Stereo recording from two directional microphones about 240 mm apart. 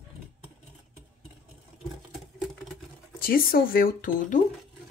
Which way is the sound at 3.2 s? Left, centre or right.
Left.